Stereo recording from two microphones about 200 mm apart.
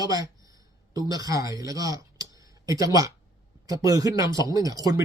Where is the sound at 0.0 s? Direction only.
15° right (ahead or behind).